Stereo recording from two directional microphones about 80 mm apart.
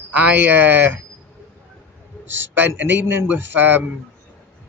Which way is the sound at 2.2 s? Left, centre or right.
Right.